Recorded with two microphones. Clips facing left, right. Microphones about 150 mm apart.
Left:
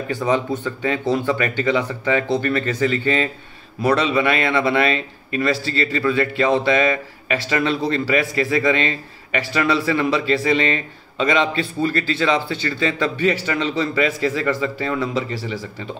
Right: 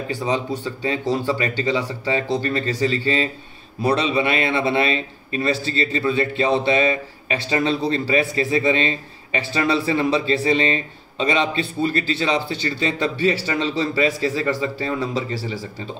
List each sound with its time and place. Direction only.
0.7 s a man's voice: 30° right (ahead or behind)